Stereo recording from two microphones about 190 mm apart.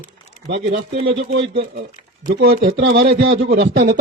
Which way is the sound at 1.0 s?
35° right (ahead or behind).